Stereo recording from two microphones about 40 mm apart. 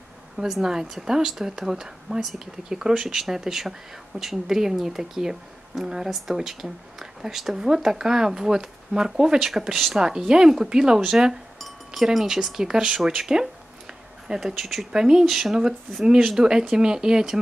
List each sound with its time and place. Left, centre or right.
0.4 s a woman's voice: centre
9.5 s speech: centre
10.0 s a woman's voice: centre
14.2 s speech: centre
14.9 s a woman's voice: centre
15.2 s speech: centre
16.0 s a woman's voice: centre